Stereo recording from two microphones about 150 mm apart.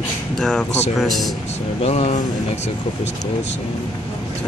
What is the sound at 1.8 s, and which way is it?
Speech, 45° left (ahead or behind).